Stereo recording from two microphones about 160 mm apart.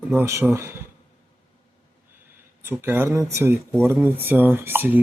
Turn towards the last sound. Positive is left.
turn(degrees=-10)  # may be behind; listen again after turning